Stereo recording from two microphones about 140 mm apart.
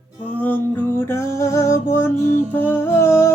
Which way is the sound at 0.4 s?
15° left (ahead or behind).